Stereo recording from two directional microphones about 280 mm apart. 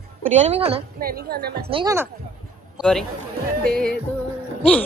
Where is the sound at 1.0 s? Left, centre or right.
Right.